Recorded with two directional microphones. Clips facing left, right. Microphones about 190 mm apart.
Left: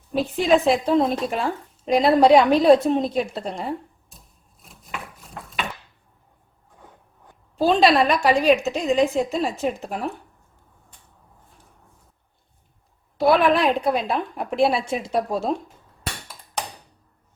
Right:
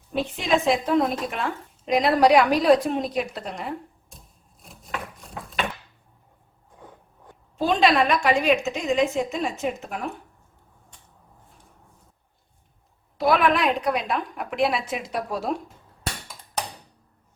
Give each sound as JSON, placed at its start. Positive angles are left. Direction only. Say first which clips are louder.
{"t": 0.3, "sound": "a woman's voice", "louder": "left 4 dB", "side_deg": 35}
{"t": 4.6, "sound": "a sound", "louder": "right 2 dB", "side_deg": 0}
{"t": 7.5, "sound": "a woman's voice", "louder": "left 3 dB", "side_deg": 35}
{"t": 13.1, "sound": "a woman's voice", "louder": "left 3 dB", "side_deg": 30}